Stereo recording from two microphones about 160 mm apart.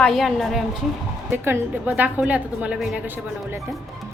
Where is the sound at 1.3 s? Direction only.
15° right (ahead or behind).